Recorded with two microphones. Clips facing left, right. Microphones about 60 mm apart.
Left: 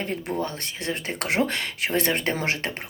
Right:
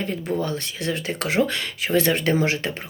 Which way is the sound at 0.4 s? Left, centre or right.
Left.